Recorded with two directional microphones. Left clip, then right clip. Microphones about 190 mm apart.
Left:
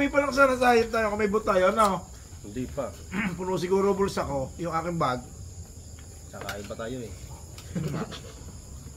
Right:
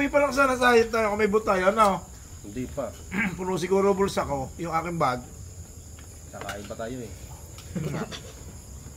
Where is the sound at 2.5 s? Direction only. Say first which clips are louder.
Even; 15° left (ahead or behind).